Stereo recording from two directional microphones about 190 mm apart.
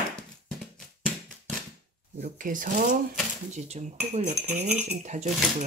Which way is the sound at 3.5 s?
35° right (ahead or behind).